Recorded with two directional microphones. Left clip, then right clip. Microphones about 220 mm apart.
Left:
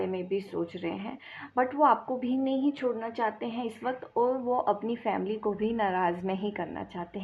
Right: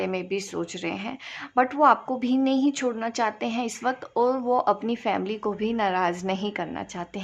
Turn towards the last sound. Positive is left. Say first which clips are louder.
# right 4 dB
turn(degrees=-30)  # may be behind; listen again after turning